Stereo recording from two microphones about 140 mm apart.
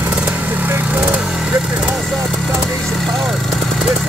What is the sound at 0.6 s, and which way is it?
Vehicle, 10° right (ahead or behind).